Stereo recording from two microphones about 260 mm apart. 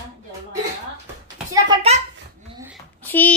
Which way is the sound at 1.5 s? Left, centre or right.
Centre.